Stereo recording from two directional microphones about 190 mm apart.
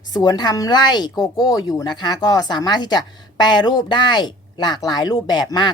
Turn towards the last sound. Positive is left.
turn(degrees=20)  # may be behind; listen again after turning